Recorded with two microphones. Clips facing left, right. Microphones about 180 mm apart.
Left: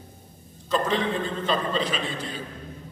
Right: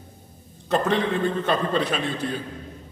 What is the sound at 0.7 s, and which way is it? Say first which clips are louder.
A man's voice: right 3 dB; 60° right (ahead or behind).